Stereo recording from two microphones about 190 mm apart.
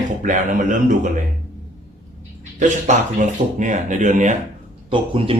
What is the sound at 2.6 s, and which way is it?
Speech, 40° right (ahead or behind).